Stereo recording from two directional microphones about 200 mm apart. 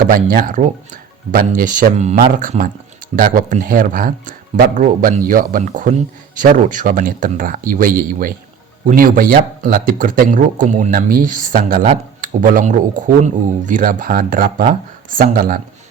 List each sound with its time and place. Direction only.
0.1 s speech: 45° right (ahead or behind)